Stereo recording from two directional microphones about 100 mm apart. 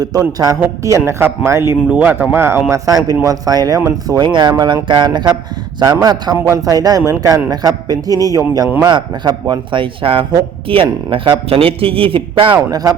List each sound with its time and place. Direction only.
0.0 s a man's voice: 40° right (ahead or behind)
0.9 s a man's voice: 25° right (ahead or behind)
1.9 s a man's voice: 15° right (ahead or behind); by 3.8 s 40° right (ahead or behind)
4.1 s a man's voice: 50° right (ahead or behind); by 12.2 s 65° right (ahead or behind)
12.7 s a man's voice: 35° right (ahead or behind)